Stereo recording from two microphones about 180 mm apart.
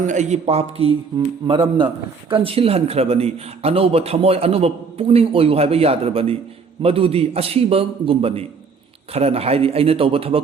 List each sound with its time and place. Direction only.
0.0 s a man's voice: 40° right (ahead or behind)
2.3 s a man's voice: 30° right (ahead or behind)